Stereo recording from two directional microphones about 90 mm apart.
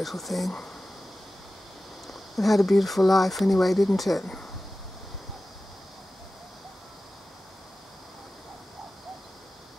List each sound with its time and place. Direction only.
0.0 s speech: centre (ahead or behind)
2.0 s speech: centre (ahead or behind)